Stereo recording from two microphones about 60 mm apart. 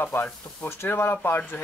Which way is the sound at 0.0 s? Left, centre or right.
Left.